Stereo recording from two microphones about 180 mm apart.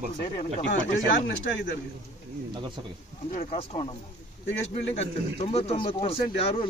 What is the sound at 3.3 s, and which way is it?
Speech, 40° left (ahead or behind).